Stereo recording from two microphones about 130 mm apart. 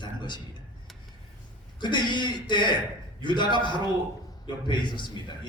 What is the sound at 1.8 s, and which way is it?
A man's voice, 35° left (ahead or behind).